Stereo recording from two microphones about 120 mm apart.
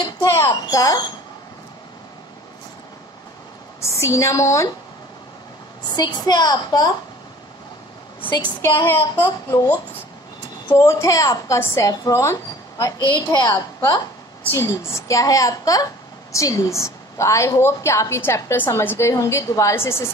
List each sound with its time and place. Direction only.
0.0 s a sound: 25° left (ahead or behind)
0.5 s a woman's voice: 30° left (ahead or behind)
3.8 s a woman's voice: 25° left (ahead or behind)
5.9 s a woman's voice: 35° left (ahead or behind)
8.6 s speech: 20° left (ahead or behind)
10.9 s a woman's voice: 25° left (ahead or behind)
13.0 s a woman's voice: 35° left (ahead or behind)
14.5 s a woman's voice: 20° left (ahead or behind)